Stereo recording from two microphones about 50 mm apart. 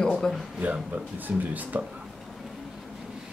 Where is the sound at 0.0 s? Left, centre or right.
Centre.